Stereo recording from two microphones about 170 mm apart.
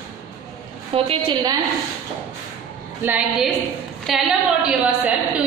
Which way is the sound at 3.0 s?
5° right (ahead or behind).